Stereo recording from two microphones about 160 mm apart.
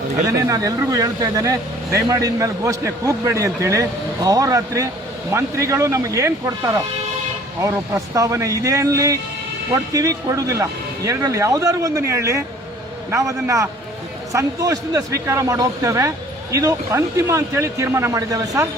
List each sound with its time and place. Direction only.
0.3 s speech: 20° right (ahead or behind)